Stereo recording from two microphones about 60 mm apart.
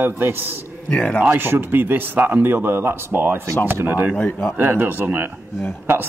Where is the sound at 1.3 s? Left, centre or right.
Right.